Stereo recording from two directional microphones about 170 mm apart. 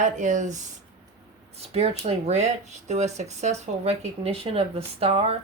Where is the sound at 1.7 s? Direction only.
35° right (ahead or behind).